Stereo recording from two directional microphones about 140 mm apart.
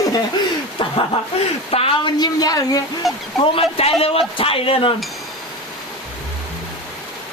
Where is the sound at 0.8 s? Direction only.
35° left (ahead or behind).